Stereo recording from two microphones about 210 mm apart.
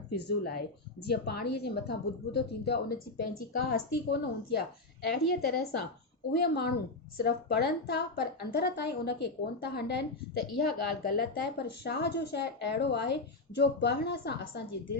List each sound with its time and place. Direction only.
0.1 s a woman's voice: 50° left (ahead or behind)